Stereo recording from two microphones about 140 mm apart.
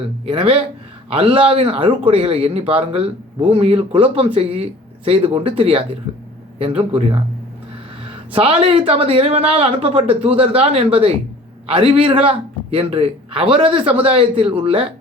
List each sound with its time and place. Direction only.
0.3 s speech: 45° right (ahead or behind)
8.3 s speech: 40° right (ahead or behind)